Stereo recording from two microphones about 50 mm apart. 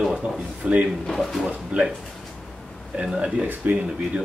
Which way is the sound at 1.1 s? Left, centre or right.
Centre.